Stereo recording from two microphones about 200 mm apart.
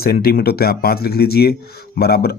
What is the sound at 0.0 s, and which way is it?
A man's voice, 50° left (ahead or behind).